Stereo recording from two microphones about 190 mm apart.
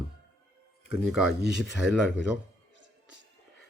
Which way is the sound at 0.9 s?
5° right (ahead or behind).